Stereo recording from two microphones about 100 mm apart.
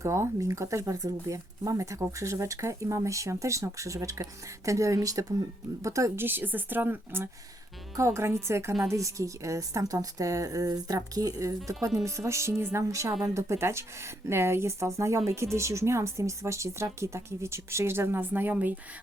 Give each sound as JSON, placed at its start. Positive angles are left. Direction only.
{"t": 0.0, "sound": "speech", "side_deg": -30}
{"t": 6.2, "sound": "speech", "side_deg": -20}